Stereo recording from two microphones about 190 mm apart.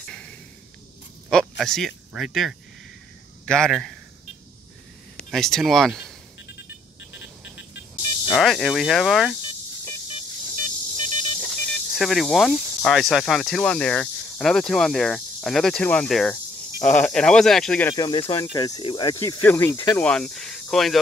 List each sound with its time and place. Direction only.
0.0 s a sound: 5° left (ahead or behind)
1.6 s speech: centre (ahead or behind)
5.3 s speech: centre (ahead or behind)
8.3 s speech: centre (ahead or behind)
10.6 s a sound: 40° right (ahead or behind)
11.4 s speech: centre (ahead or behind)
17.9 s speech: 25° left (ahead or behind); by 21.0 s centre (ahead or behind)